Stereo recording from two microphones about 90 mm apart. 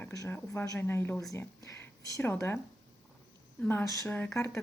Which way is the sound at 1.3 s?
30° left (ahead or behind).